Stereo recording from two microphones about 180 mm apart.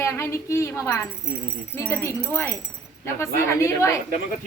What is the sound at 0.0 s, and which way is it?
A woman's voice, 15° left (ahead or behind).